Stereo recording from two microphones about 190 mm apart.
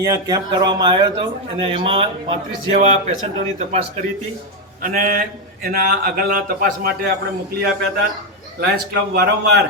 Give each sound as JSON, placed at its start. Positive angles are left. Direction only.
{"t": 0.0, "sound": "a man's voice", "side_deg": -20}